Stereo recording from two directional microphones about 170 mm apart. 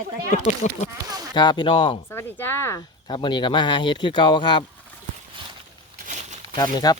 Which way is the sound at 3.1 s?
25° left (ahead or behind).